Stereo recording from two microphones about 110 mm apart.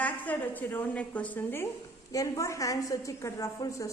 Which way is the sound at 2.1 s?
30° left (ahead or behind).